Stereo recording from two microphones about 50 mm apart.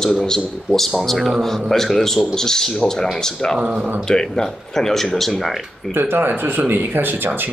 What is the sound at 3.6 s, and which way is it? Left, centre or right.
Speech, right.